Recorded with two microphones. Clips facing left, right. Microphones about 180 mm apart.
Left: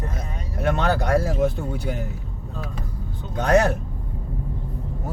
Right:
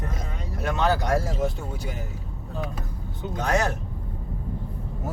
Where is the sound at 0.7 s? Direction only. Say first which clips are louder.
Left 1 dB; 55° left (ahead or behind).